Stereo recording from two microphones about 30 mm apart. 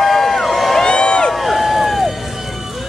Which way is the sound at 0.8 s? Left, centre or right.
Left.